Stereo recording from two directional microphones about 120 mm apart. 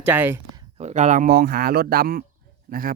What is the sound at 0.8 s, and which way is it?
Speech, 70° right (ahead or behind).